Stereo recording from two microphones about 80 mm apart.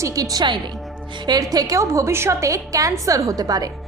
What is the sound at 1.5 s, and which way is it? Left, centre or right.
A woman's voice, right.